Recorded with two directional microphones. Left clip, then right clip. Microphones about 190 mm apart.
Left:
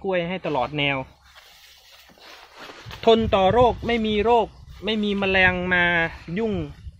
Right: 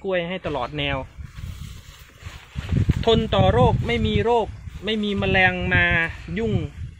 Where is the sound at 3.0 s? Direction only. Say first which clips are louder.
Left 2 dB; 45° left (ahead or behind).